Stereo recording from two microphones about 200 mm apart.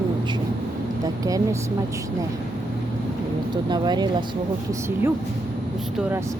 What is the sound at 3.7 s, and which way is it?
Speech, 20° right (ahead or behind).